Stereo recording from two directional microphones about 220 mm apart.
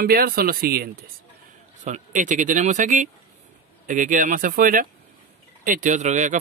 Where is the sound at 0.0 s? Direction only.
45° right (ahead or behind).